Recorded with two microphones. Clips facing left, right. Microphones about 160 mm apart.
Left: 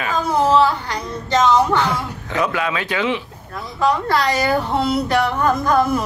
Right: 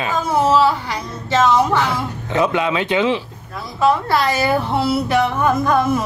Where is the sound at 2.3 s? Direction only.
20° right (ahead or behind).